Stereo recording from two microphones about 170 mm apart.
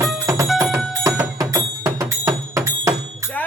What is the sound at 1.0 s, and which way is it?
Music, 15° right (ahead or behind).